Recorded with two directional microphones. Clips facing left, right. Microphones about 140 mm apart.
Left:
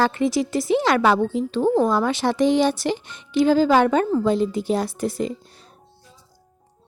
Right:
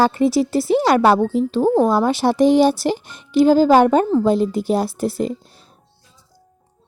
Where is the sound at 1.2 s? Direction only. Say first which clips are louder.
Right 4 dB; 5° right (ahead or behind).